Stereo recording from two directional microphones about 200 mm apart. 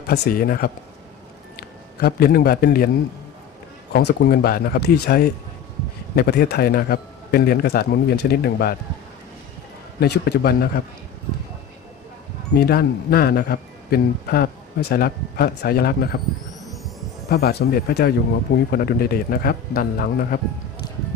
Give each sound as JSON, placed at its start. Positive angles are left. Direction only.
{"t": 0.1, "sound": "a man's voice", "side_deg": 45}
{"t": 3.9, "sound": "a man's voice", "side_deg": 50}
{"t": 10.0, "sound": "a man's voice", "side_deg": 55}
{"t": 12.5, "sound": "a man's voice", "side_deg": 50}
{"t": 16.6, "sound": "music", "side_deg": 0}
{"t": 17.2, "sound": "a man's voice", "side_deg": 50}